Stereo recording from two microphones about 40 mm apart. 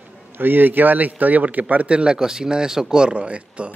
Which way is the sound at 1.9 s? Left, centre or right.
Right.